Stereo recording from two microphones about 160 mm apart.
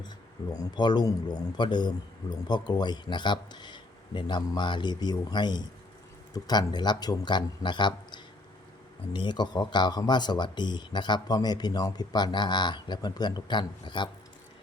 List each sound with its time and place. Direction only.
0.5 s speech: 25° left (ahead or behind)